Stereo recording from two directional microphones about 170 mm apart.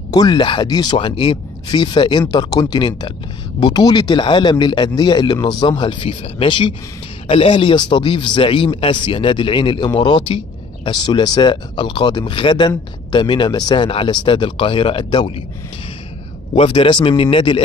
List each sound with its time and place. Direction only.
0.1 s speech: 25° left (ahead or behind)
16.5 s speech: 30° left (ahead or behind)